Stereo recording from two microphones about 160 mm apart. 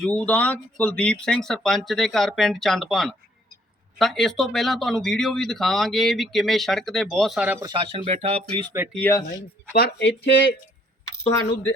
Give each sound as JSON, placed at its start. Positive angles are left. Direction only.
{"t": 0.0, "sound": "speech", "side_deg": 10}
{"t": 7.6, "sound": "speech", "side_deg": -30}
{"t": 8.9, "sound": "speech", "side_deg": 10}
{"t": 9.7, "sound": "speech", "side_deg": 85}
{"t": 11.3, "sound": "speech", "side_deg": 15}